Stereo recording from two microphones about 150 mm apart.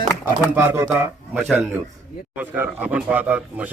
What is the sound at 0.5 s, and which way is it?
Speech, 15° right (ahead or behind).